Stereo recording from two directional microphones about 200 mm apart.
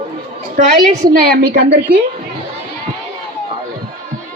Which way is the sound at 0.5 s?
45° right (ahead or behind).